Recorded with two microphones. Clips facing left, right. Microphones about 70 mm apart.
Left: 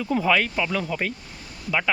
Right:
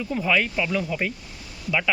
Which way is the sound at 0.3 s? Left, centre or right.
Left.